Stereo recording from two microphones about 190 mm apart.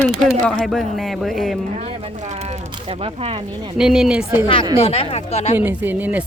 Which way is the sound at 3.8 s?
5° right (ahead or behind).